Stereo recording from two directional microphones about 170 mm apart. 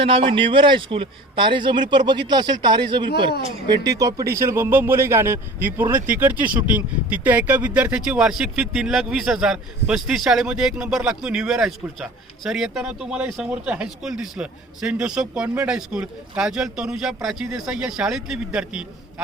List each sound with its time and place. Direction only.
0.0 s a man's voice: 35° right (ahead or behind); by 18.9 s 5° right (ahead or behind)